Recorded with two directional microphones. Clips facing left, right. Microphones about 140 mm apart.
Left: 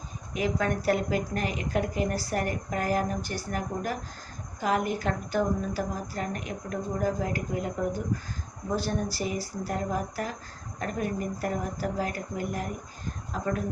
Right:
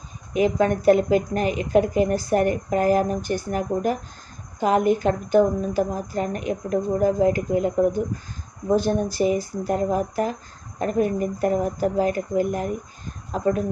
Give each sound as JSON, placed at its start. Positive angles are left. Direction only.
{"t": 0.3, "sound": "a woman's voice", "side_deg": -20}